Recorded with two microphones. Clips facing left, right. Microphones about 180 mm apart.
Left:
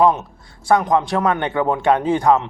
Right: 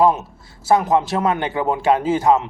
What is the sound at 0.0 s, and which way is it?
Speech, 5° right (ahead or behind).